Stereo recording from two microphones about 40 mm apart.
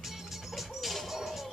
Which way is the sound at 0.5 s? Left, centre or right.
Centre.